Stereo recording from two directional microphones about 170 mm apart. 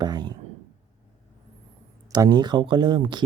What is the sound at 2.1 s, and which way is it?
Speech, 25° right (ahead or behind).